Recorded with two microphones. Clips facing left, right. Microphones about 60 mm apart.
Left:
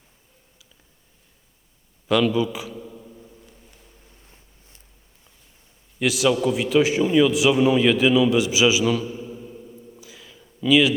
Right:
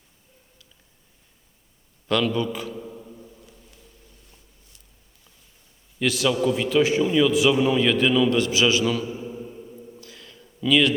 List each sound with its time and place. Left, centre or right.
2.0 s a man's voice: centre
2.7 s mantra: centre
3.2 s a sound: centre
6.0 s a man's voice: centre
9.1 s mantra: centre
9.9 s a sound: centre